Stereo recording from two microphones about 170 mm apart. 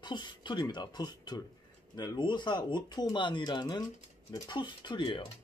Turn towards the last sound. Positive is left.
turn(degrees=30)  # may be behind; listen again after turning